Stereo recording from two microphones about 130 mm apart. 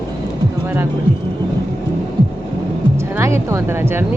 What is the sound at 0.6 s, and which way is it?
Speech, 15° right (ahead or behind).